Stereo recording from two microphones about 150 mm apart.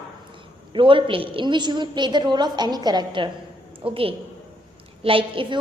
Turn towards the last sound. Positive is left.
turn(degrees=-35)  # may be behind; listen again after turning